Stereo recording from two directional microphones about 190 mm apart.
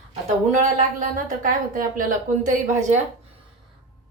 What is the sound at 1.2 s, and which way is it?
A woman's voice, 45° right (ahead or behind).